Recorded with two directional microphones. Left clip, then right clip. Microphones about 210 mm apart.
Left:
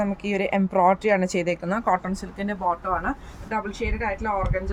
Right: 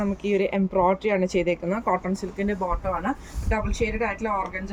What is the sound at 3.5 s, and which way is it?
Speech, 10° left (ahead or behind).